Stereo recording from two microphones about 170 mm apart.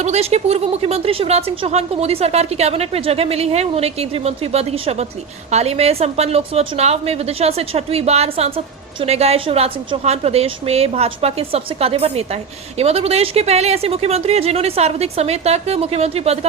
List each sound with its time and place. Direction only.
0.0 s a woman's voice: 40° right (ahead or behind)